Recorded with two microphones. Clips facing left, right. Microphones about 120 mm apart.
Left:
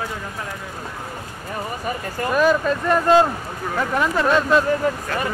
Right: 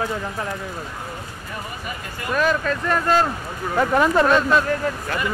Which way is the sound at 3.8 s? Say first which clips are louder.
Right 4 dB; 25° right (ahead or behind).